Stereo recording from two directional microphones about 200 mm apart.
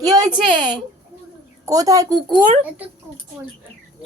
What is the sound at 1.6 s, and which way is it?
Speech, 15° right (ahead or behind).